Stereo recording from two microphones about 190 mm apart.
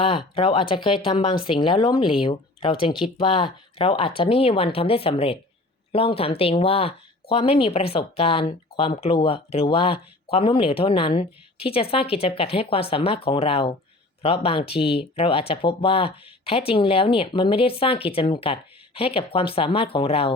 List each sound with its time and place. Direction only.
0.3 s speech: 25° left (ahead or behind)